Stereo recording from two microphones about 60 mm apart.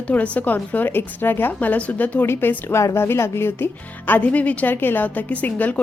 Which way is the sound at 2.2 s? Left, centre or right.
Left.